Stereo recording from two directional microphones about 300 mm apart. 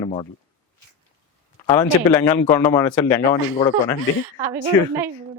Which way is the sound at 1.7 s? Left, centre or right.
Centre.